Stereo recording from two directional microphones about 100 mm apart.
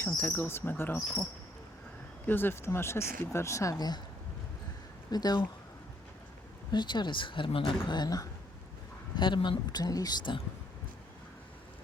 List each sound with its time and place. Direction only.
0.2 s speech: 20° left (ahead or behind)
2.2 s speech: 20° left (ahead or behind); by 4.0 s 40° left (ahead or behind)
5.1 s speech: 40° left (ahead or behind)
6.7 s speech: 50° left (ahead or behind)
9.1 s speech: 50° left (ahead or behind)